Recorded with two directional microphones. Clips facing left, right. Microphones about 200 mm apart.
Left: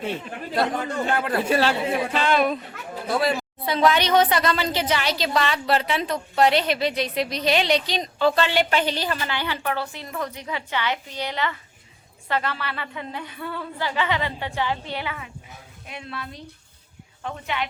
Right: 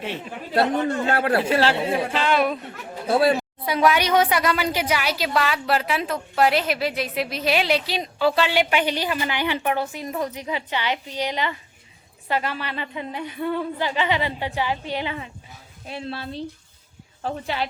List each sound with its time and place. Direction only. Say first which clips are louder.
1.1 s speech: right 3 dB; 70° right (ahead or behind)
1.5 s speech: right 1 dB; 10° left (ahead or behind)
2.1 s a woman's voice: left 1 dB; 10° right (ahead or behind)
3.1 s a woman's voice: right 4 dB; 30° right (ahead or behind)
3.7 s a woman's voice: even; 10° right (ahead or behind)
15.9 s speech: right 5 dB; 30° right (ahead or behind)